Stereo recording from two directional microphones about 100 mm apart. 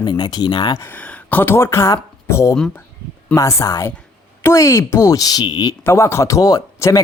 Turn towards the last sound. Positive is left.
turn(degrees=35)  # may be behind; listen again after turning